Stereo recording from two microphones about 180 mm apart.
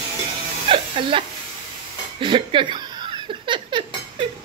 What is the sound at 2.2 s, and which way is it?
Speech, 30° right (ahead or behind).